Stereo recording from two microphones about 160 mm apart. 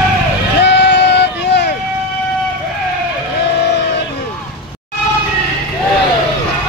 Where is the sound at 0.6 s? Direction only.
90° left.